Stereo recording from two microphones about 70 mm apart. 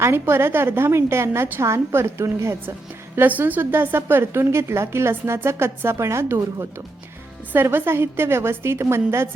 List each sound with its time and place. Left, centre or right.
0.0 s a woman's voice: right
3.2 s a woman's voice: right